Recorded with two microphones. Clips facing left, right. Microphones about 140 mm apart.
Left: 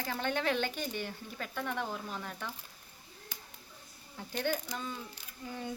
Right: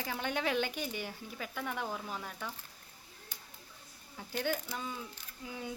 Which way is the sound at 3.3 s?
90° left.